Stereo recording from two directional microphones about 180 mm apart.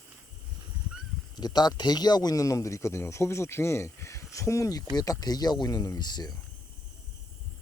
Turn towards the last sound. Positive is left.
turn(degrees=25)  # may be behind; listen again after turning